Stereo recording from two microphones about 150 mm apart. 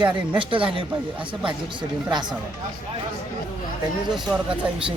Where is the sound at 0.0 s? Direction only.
35° right (ahead or behind).